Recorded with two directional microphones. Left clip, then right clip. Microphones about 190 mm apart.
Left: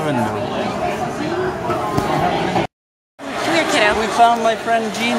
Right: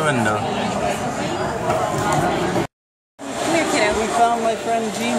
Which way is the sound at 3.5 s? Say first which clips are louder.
Left 3 dB; centre (ahead or behind).